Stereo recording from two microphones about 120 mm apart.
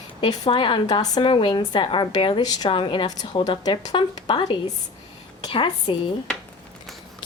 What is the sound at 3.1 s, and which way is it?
Speech, 30° left (ahead or behind).